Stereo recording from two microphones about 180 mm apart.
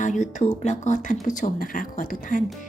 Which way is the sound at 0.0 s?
45° left (ahead or behind).